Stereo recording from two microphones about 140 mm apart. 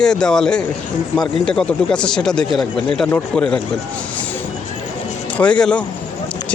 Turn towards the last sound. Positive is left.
turn(degrees=5)  # may be behind; listen again after turning